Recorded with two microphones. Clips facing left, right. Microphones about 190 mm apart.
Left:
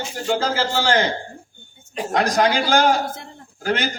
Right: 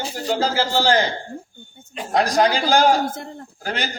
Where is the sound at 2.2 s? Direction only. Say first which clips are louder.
Right 1 dB; 35° right (ahead or behind).